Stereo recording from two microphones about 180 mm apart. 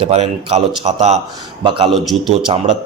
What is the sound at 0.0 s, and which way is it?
A man's voice, 35° right (ahead or behind).